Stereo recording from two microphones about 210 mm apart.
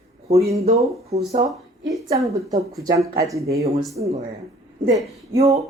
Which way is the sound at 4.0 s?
40° right (ahead or behind).